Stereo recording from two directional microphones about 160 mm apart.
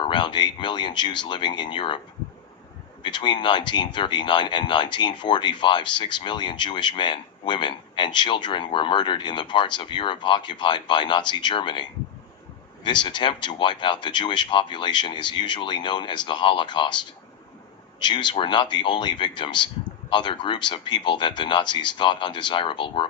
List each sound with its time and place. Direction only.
0.0 s speech: 30° left (ahead or behind)
3.0 s speech: 30° left (ahead or behind)
18.0 s speech: 30° left (ahead or behind)